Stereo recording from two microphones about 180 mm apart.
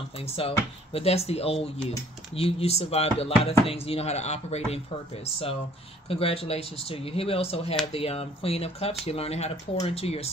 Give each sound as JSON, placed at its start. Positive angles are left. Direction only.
{"t": 0.2, "sound": "speech", "side_deg": 30}